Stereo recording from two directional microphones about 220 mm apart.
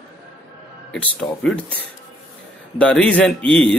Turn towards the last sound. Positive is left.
turn(degrees=5)  # may be behind; listen again after turning